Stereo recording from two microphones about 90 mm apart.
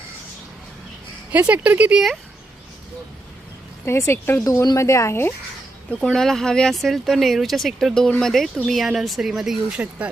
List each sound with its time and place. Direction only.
1.3 s speech: 15° right (ahead or behind)
3.8 s speech: 30° left (ahead or behind)
4.4 s speech: 45° left (ahead or behind)
5.9 s speech: 10° left (ahead or behind); by 10.1 s 15° right (ahead or behind)